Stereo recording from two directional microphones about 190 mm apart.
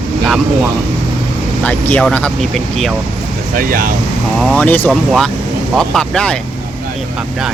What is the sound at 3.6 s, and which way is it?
Speech, 45° right (ahead or behind).